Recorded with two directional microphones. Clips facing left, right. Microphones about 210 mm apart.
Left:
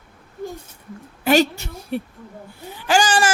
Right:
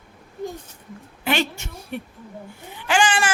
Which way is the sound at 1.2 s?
40° left (ahead or behind).